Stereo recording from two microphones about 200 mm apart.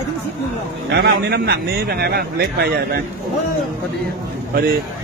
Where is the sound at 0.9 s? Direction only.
55° right (ahead or behind).